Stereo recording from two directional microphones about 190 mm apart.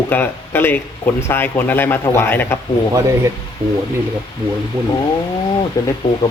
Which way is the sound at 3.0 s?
15° right (ahead or behind).